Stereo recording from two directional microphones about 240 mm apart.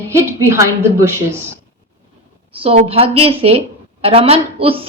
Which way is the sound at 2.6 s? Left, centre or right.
Right.